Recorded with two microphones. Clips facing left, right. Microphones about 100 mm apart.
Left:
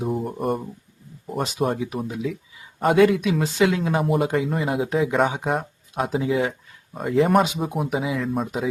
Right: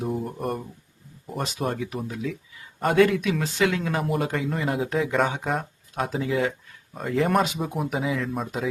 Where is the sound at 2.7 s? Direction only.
5° left (ahead or behind).